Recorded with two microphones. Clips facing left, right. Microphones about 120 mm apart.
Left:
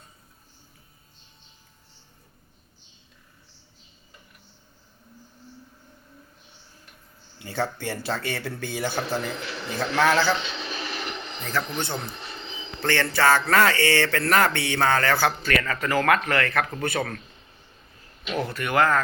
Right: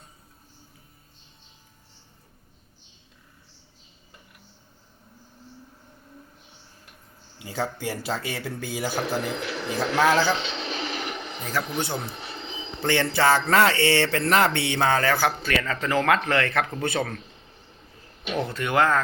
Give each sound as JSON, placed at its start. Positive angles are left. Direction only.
{"t": 7.3, "sound": "a man's voice", "side_deg": -5}
{"t": 10.6, "sound": "a sound", "side_deg": -25}
{"t": 12.8, "sound": "speech", "side_deg": -15}
{"t": 18.3, "sound": "speech", "side_deg": -20}